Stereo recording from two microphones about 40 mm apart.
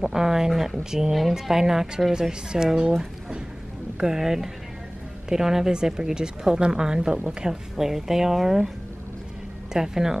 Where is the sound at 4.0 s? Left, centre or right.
Centre.